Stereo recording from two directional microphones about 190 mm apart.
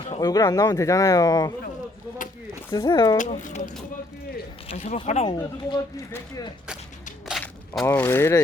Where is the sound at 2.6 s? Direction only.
20° left (ahead or behind).